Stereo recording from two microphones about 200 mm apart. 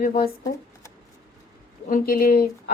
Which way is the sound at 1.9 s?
45° left (ahead or behind).